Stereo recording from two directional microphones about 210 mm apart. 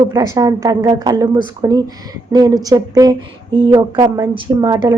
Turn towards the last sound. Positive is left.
turn(degrees=-20)  # may be behind; listen again after turning